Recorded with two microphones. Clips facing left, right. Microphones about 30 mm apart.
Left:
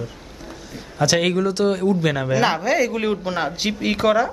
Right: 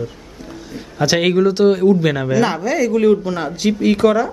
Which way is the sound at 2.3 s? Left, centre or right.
Centre.